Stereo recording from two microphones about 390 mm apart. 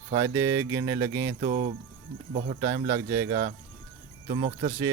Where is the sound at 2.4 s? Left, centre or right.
Centre.